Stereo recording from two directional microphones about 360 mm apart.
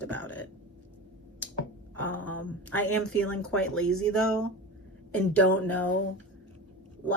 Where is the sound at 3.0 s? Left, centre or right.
Left.